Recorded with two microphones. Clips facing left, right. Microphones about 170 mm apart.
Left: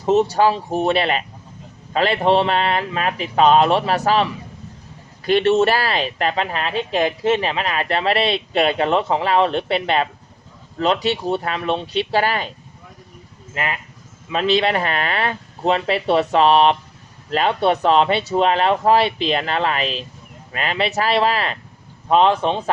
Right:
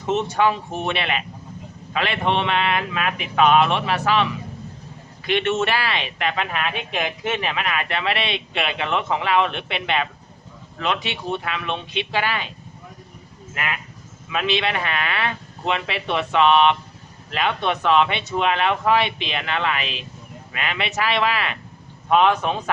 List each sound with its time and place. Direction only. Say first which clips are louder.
0.0 s speech: left 5 dB; 35° left (ahead or behind)